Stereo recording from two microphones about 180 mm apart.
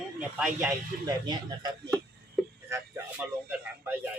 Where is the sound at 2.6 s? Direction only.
15° right (ahead or behind).